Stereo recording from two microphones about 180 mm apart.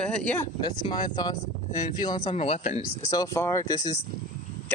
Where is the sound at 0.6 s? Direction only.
25° left (ahead or behind).